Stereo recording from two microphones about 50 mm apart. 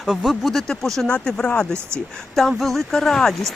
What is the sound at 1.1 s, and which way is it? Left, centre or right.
Speech, left.